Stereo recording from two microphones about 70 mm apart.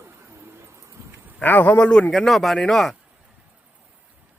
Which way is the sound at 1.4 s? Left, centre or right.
Left.